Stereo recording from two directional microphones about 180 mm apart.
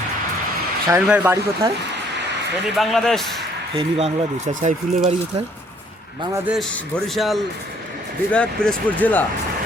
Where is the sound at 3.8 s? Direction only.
35° right (ahead or behind).